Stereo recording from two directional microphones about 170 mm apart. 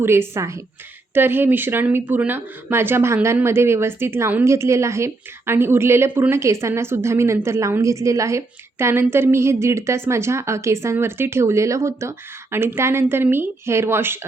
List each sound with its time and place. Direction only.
0.0 s speech: 15° right (ahead or behind)